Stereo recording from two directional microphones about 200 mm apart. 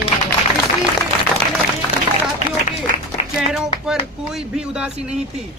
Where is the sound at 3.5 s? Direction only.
5° right (ahead or behind).